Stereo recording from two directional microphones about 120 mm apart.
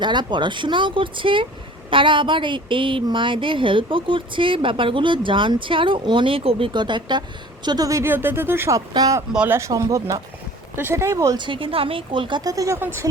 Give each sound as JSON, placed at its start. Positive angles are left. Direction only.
{"t": 0.0, "sound": "a woman's voice", "side_deg": -40}
{"t": 8.9, "sound": "speech", "side_deg": -30}
{"t": 11.4, "sound": "speech", "side_deg": -45}